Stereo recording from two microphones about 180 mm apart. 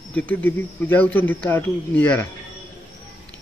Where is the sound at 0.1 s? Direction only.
10° left (ahead or behind).